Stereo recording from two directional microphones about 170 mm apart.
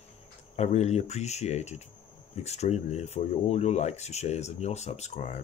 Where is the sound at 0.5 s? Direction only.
40° left (ahead or behind).